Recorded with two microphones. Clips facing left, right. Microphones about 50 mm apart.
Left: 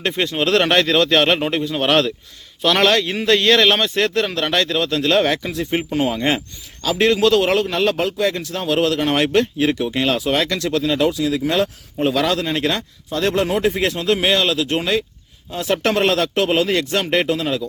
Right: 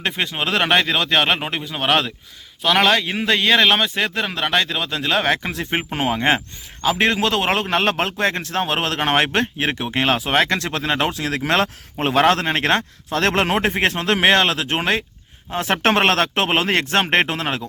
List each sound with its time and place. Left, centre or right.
0.0 s a man's voice: centre
5.4 s a man's voice: right
11.3 s speech: right
13.1 s speech: right